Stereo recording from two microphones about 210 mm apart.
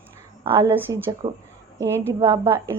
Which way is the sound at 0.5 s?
10° right (ahead or behind).